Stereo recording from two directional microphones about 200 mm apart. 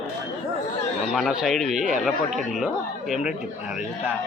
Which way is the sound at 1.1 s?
Centre (ahead or behind).